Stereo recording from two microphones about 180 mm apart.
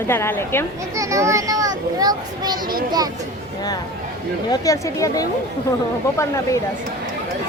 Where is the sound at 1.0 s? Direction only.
15° right (ahead or behind).